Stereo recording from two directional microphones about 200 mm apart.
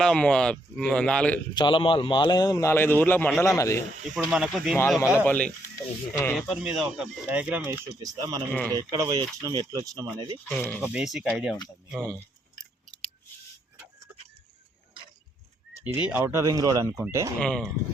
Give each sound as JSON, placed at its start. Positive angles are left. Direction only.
{"t": 0.0, "sound": "speech", "side_deg": 5}
{"t": 1.5, "sound": "a man's voice", "side_deg": 25}
{"t": 4.1, "sound": "speech", "side_deg": 0}
{"t": 5.2, "sound": "speech", "side_deg": 10}
{"t": 6.3, "sound": "speech", "side_deg": 0}
{"t": 10.5, "sound": "speech", "side_deg": 10}
{"t": 10.8, "sound": "speech", "side_deg": -5}
{"t": 14.1, "sound": "vehicle", "side_deg": -5}
{"t": 16.0, "sound": "speech", "side_deg": -10}
{"t": 17.4, "sound": "speech", "side_deg": 5}